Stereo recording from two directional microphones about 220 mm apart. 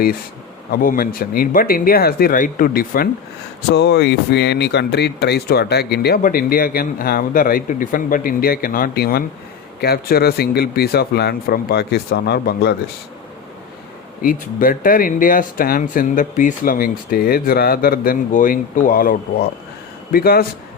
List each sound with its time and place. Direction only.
0.7 s speech: 40° left (ahead or behind)
14.2 s speech: 40° left (ahead or behind)